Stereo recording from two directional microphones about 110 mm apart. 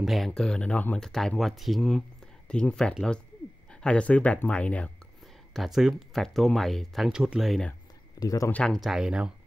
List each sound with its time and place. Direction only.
0.0 s speech: centre (ahead or behind)
5.5 s speech: centre (ahead or behind)
8.2 s speech: 35° left (ahead or behind)
8.5 s speech: 15° left (ahead or behind)
8.7 s speech: 5° right (ahead or behind)